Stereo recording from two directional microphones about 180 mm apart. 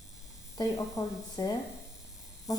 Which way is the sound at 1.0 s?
15° left (ahead or behind).